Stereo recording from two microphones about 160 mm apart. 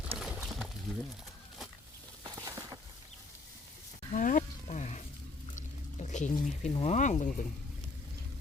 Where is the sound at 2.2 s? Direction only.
25° right (ahead or behind).